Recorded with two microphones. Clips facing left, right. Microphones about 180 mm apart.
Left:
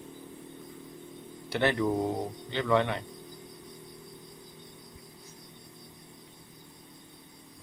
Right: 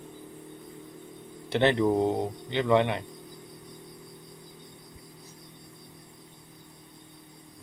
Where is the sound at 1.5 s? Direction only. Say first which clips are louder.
Right 4 dB; 25° right (ahead or behind).